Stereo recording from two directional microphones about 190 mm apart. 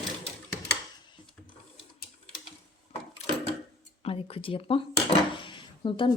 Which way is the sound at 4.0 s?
30° left (ahead or behind).